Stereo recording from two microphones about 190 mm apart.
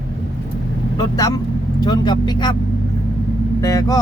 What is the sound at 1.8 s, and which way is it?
Speech, 20° left (ahead or behind).